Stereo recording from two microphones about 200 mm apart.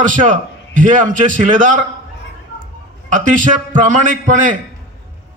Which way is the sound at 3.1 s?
40° right (ahead or behind).